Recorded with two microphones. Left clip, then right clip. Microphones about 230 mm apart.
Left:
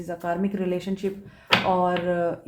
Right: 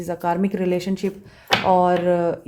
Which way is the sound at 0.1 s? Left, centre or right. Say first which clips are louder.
Right 5 dB; right.